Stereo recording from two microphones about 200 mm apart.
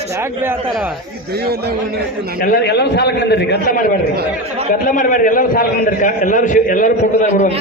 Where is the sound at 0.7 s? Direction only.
Centre (ahead or behind).